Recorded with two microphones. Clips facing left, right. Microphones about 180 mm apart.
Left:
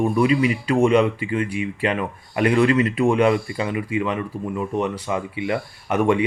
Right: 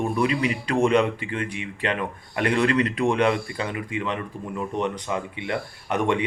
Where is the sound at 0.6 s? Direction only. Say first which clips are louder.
Left 3 dB; 5° left (ahead or behind).